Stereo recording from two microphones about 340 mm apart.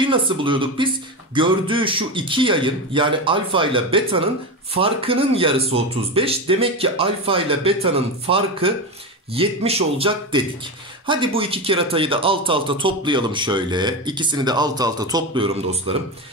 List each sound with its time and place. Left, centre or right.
0.0 s speech: centre